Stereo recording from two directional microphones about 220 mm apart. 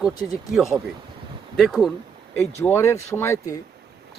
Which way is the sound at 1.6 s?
Centre (ahead or behind).